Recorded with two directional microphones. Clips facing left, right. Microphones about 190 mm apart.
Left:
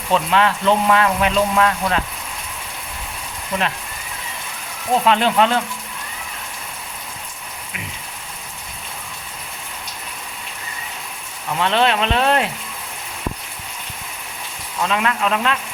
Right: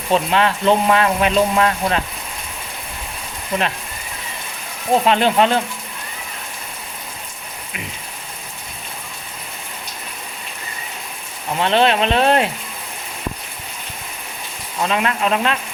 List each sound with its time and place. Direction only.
0.1 s speech: 25° right (ahead or behind)
4.9 s speech: 25° right (ahead or behind)
11.4 s speech: 25° right (ahead or behind)
14.8 s speech: 25° right (ahead or behind)